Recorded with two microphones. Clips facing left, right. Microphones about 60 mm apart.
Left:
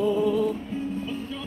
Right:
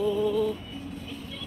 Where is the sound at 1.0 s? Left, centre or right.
Left.